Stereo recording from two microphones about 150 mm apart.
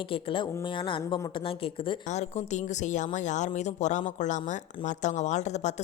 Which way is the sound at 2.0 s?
50° left (ahead or behind).